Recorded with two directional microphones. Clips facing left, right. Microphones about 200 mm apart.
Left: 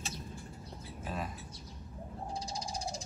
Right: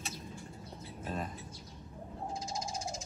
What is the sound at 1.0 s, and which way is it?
Speech, 5° left (ahead or behind).